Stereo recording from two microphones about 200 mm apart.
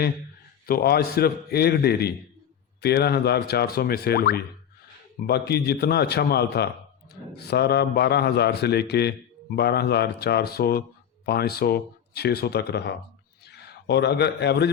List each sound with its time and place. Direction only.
0.7 s a man's voice: 50° left (ahead or behind)